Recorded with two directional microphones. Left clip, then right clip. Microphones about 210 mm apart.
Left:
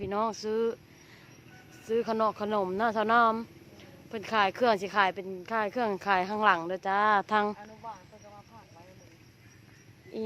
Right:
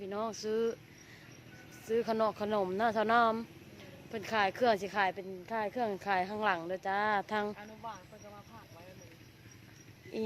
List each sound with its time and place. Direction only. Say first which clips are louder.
0.0 s speech: left 6 dB; 25° left (ahead or behind)
1.9 s speech: left 3 dB; 15° left (ahead or behind)